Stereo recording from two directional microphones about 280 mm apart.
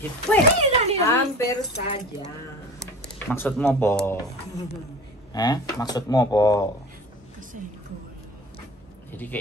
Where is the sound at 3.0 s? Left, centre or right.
Centre.